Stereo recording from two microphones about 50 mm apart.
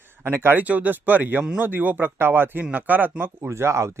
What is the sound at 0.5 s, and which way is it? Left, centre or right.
Speech, right.